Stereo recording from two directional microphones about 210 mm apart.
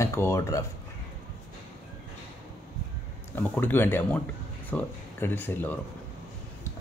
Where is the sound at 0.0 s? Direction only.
15° left (ahead or behind).